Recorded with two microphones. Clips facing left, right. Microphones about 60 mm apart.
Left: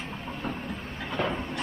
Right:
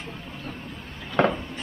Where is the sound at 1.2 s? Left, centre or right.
Right.